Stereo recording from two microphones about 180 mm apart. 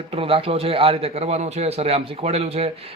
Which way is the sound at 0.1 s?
30° right (ahead or behind).